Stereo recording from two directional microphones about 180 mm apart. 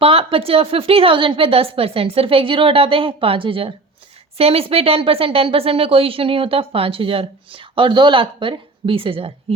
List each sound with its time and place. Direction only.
0.0 s speech: 30° right (ahead or behind)